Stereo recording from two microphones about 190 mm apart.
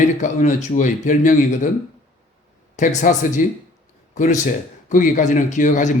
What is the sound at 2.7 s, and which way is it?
A man's voice, 40° left (ahead or behind).